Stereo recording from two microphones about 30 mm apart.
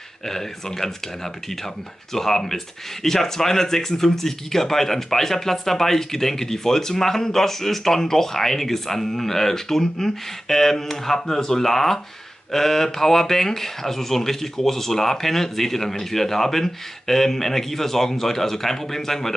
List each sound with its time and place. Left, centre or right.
0.3 s speech: centre